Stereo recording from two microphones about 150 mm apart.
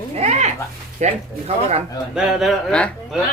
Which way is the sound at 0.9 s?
50° right (ahead or behind).